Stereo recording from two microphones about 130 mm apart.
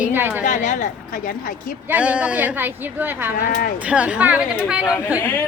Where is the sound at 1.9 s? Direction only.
10° right (ahead or behind).